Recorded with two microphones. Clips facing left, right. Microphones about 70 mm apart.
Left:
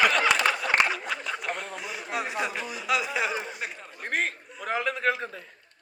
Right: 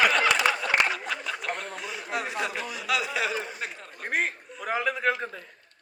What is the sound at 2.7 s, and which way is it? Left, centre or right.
Chuckle, left.